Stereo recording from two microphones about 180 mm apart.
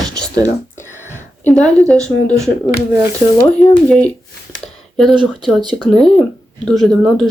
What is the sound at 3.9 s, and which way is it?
Speech, 5° left (ahead or behind).